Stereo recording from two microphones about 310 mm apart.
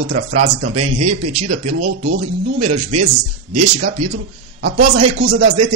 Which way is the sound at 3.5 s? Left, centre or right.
Right.